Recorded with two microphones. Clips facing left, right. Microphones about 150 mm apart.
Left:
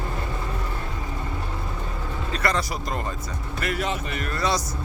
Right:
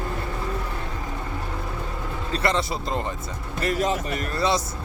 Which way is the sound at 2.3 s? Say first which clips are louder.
Right 2 dB; 25° right (ahead or behind).